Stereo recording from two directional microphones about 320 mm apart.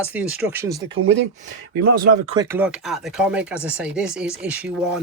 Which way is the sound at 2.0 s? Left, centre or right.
Centre.